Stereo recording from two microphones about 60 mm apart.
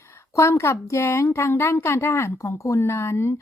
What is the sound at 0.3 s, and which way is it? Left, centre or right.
A woman's voice, left.